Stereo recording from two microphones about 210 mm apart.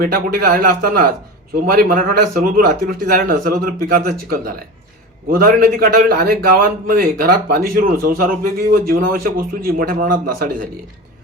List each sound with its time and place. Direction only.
0.0 s a man's voice: 45° right (ahead or behind)